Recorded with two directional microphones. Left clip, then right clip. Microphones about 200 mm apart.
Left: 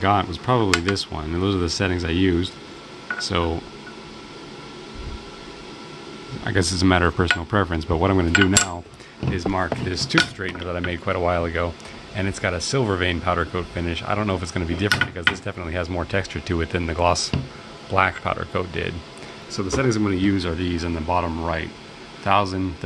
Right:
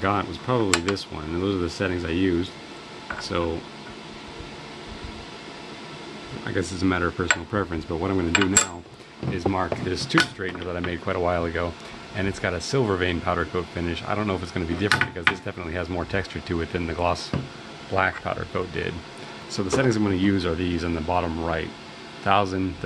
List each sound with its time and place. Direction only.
0.0 s speech: 20° left (ahead or behind)
6.4 s speech: 25° left (ahead or behind)
9.3 s speech: 15° left (ahead or behind)
9.8 s speech: centre (ahead or behind)